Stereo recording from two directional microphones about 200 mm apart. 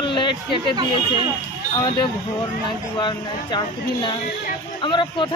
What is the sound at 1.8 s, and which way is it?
Speech, 20° left (ahead or behind).